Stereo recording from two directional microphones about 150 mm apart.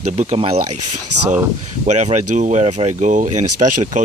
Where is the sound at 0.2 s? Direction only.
40° right (ahead or behind).